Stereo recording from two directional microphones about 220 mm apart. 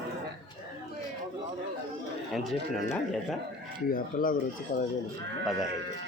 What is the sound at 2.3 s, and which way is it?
A man's voice, centre (ahead or behind).